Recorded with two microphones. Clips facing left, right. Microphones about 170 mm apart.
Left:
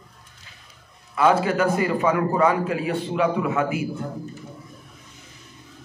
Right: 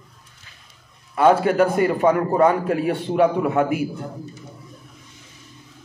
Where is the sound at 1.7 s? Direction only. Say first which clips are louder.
Right 3 dB; 55° right (ahead or behind).